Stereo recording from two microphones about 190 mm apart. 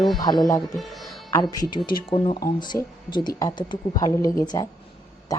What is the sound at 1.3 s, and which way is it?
A woman's voice, 20° left (ahead or behind).